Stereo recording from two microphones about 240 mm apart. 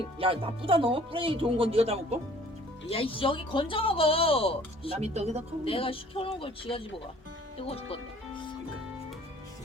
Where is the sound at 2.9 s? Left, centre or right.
Left.